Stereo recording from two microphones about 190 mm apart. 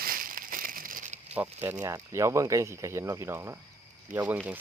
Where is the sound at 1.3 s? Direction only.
10° right (ahead or behind).